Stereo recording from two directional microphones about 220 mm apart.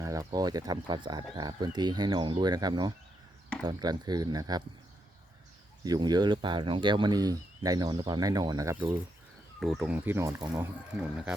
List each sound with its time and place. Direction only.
0.0 s speech: 15° right (ahead or behind)
5.8 s speech: 15° right (ahead or behind)
9.6 s speech: centre (ahead or behind)